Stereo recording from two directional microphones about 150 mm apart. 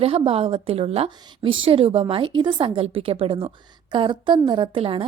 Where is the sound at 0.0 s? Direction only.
40° right (ahead or behind).